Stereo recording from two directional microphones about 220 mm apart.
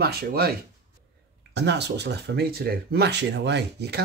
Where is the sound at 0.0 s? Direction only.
45° right (ahead or behind).